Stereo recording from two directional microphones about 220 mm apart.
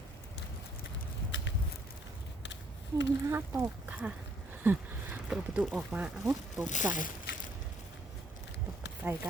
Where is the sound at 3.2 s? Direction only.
10° right (ahead or behind).